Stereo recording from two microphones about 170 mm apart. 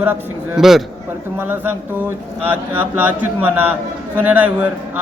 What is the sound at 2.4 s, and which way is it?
A man's voice, 10° right (ahead or behind).